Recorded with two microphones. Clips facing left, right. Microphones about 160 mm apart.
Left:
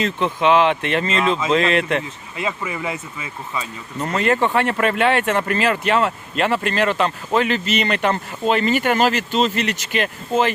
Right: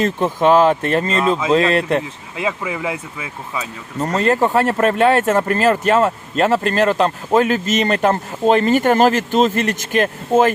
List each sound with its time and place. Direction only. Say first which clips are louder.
0.0 s speech: right 3 dB; 45° right (ahead or behind)
1.2 s speech: right 2 dB; 10° right (ahead or behind)
1.5 s speech: right 3 dB; 35° right (ahead or behind)
2.4 s speech: right 3 dB; 10° right (ahead or behind)
4.0 s speech: right 3 dB; 35° right (ahead or behind)